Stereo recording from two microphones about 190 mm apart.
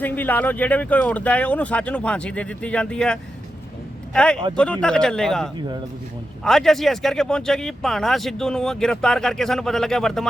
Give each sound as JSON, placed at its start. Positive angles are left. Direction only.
{"t": 0.0, "sound": "speech", "side_deg": 10}
{"t": 5.5, "sound": "speech", "side_deg": -20}
{"t": 6.4, "sound": "speech", "side_deg": 0}